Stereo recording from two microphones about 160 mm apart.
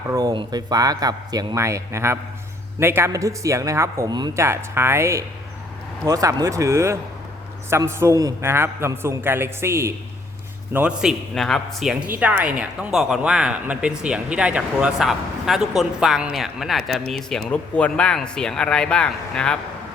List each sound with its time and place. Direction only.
0.1 s a man's voice: 25° right (ahead or behind)
11.3 s a woman's voice: 5° left (ahead or behind)